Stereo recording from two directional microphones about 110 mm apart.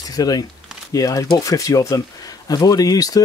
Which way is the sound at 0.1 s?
35° left (ahead or behind).